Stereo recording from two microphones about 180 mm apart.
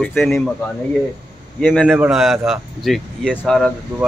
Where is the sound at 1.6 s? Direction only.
Centre (ahead or behind).